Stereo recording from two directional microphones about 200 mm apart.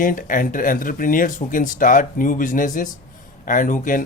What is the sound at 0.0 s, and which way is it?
Speech, 40° left (ahead or behind).